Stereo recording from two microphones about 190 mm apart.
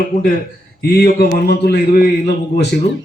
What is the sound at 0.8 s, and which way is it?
A man's voice, 55° left (ahead or behind).